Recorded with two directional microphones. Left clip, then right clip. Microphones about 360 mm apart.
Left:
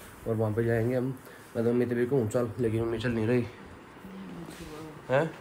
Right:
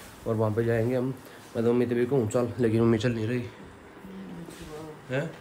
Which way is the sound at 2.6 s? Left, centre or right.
Right.